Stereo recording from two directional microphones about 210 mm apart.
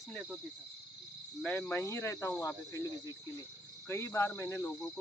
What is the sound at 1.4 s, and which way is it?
Speech, 5° left (ahead or behind).